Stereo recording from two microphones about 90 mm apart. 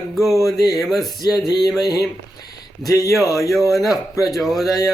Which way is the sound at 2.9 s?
40° left (ahead or behind).